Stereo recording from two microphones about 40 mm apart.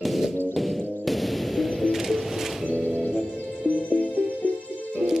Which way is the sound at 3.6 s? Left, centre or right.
Left.